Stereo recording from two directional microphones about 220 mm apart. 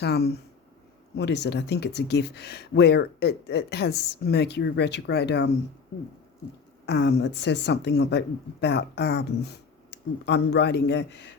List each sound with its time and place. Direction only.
0.0 s speech: 45° left (ahead or behind)
6.8 s speech: 50° left (ahead or behind)